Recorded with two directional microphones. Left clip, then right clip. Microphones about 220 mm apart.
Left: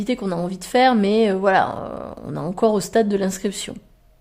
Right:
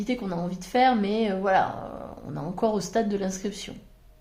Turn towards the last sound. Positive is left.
turn(degrees=40)  # may be behind; listen again after turning